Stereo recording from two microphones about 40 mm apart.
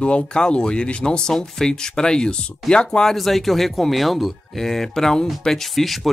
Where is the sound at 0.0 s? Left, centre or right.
Left.